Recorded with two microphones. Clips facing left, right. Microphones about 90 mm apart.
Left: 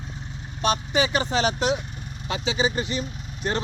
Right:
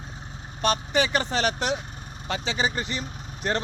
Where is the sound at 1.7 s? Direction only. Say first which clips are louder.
Left 3 dB; 40° right (ahead or behind).